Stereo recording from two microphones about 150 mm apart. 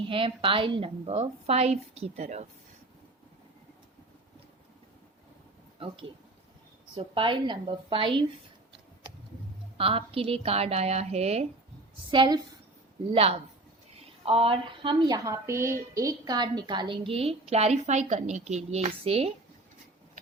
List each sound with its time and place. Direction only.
0.1 s a woman's voice: 35° right (ahead or behind)
6.9 s a woman's voice: 35° right (ahead or behind)
9.7 s a woman's voice: 40° right (ahead or behind)
12.1 s a woman's voice: 30° right (ahead or behind)
13.1 s a woman's voice: 40° right (ahead or behind)